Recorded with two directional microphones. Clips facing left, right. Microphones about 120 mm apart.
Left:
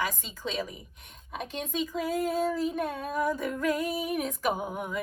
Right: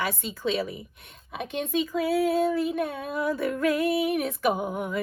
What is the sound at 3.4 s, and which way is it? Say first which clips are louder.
Speech: right 5 dB; 65° right (ahead or behind).